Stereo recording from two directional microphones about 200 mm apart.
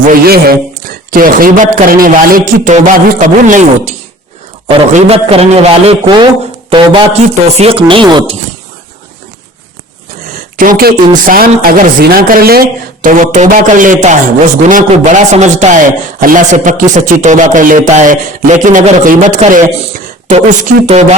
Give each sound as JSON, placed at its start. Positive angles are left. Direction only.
{"t": 0.1, "sound": "a woman's voice", "side_deg": -50}
{"t": 4.9, "sound": "speech", "side_deg": -30}
{"t": 10.6, "sound": "a woman's voice", "side_deg": -45}